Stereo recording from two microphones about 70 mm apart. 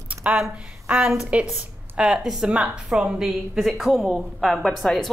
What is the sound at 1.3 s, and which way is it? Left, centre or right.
A woman's voice, centre.